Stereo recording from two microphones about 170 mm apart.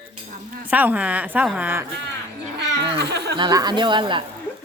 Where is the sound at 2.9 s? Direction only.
80° right.